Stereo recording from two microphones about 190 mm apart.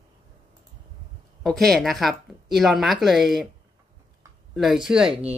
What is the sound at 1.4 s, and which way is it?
Speech, 5° left (ahead or behind).